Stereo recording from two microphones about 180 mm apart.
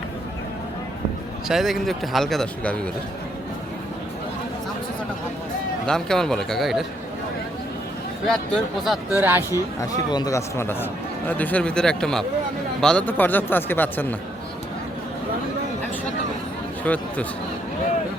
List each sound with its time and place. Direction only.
1.5 s speech: centre (ahead or behind)
5.8 s speech: 5° left (ahead or behind)
8.3 s speech: 5° left (ahead or behind)
9.5 s speech: 20° left (ahead or behind)
16.8 s speech: 10° left (ahead or behind)